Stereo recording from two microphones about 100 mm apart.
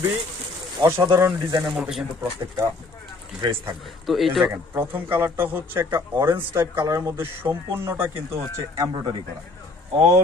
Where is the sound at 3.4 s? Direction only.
50° right (ahead or behind).